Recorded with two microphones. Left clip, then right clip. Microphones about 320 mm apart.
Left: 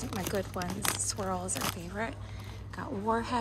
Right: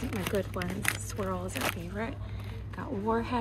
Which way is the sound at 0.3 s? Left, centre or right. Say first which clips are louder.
Right 2 dB; centre.